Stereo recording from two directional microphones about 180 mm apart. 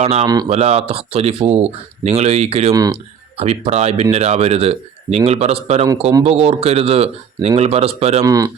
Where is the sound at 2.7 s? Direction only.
20° right (ahead or behind).